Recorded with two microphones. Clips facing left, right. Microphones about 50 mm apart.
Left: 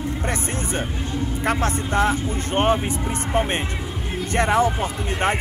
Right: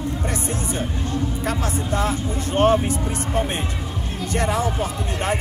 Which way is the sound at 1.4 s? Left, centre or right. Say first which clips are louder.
Left 2 dB; left.